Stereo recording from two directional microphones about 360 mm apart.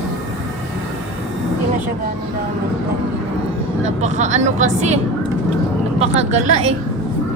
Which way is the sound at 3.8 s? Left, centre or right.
Centre.